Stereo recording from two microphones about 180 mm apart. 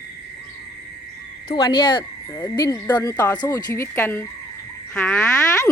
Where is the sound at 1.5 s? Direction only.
25° left (ahead or behind).